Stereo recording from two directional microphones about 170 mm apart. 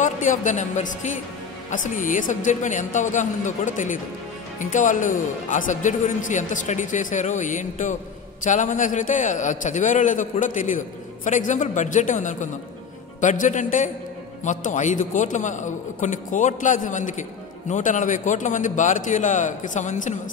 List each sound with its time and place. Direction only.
0.0 s a woman's voice: 50° left (ahead or behind)